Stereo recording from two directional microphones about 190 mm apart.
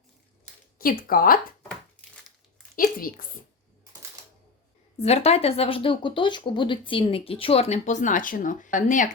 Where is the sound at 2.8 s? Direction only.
50° left (ahead or behind).